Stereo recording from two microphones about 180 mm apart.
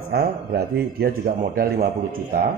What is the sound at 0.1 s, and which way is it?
Speech, 60° right (ahead or behind).